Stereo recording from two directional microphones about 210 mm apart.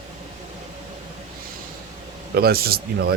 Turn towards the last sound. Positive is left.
turn(degrees=-45)  # may be behind; listen again after turning